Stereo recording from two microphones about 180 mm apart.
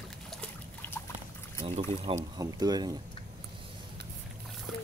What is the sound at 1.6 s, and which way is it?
Speech, 30° right (ahead or behind).